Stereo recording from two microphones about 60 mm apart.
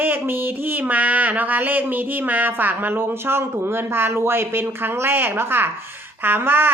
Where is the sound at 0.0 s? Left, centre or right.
Right.